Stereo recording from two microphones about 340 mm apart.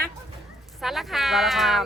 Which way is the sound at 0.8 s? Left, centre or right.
Centre.